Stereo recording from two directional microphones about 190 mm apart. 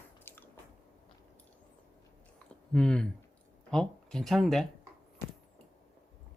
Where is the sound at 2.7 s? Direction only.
5° left (ahead or behind).